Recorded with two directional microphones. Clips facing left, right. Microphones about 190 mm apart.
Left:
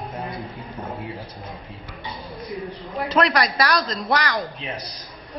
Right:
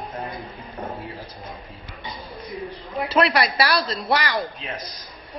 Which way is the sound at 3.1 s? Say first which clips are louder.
Even; 10° right (ahead or behind).